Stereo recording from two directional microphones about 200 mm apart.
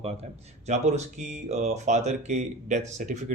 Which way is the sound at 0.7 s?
35° right (ahead or behind).